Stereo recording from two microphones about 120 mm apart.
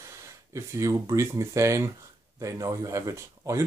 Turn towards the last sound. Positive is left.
turn(degrees=-25)  # may be behind; listen again after turning